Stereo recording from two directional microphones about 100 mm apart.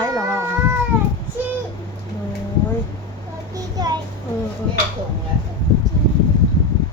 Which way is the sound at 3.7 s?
40° right (ahead or behind).